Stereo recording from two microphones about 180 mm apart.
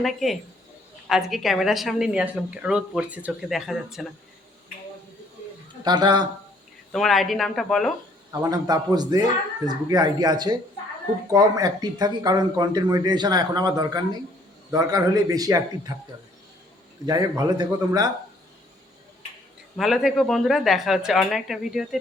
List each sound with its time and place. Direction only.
0.0 s a woman's voice: centre (ahead or behind)
5.8 s speech: 25° right (ahead or behind)
6.9 s a woman's voice: centre (ahead or behind)
8.3 s speech: 20° right (ahead or behind)
17.1 s speech: 20° right (ahead or behind)
19.7 s a woman's voice: centre (ahead or behind)